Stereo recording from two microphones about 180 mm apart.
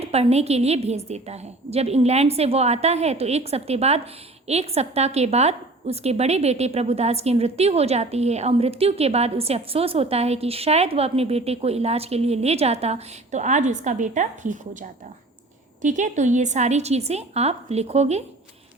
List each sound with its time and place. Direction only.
0.0 s a woman's voice: 35° right (ahead or behind)